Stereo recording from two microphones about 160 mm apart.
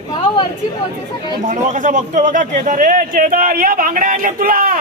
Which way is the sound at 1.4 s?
50° right (ahead or behind).